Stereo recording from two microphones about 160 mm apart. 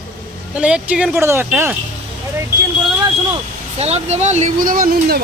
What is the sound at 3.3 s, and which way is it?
Speech, 40° right (ahead or behind).